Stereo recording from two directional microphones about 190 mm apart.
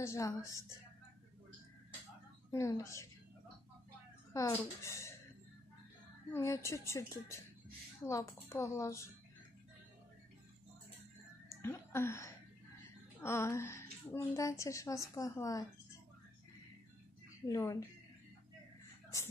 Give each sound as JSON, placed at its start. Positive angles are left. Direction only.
{"t": 0.0, "sound": "a woman's voice", "side_deg": 15}
{"t": 2.5, "sound": "a woman's voice", "side_deg": 15}
{"t": 4.3, "sound": "a woman's voice", "side_deg": 15}
{"t": 6.3, "sound": "a woman's voice", "side_deg": 15}
{"t": 11.4, "sound": "a woman's voice", "side_deg": 15}
{"t": 17.5, "sound": "a woman's voice", "side_deg": 15}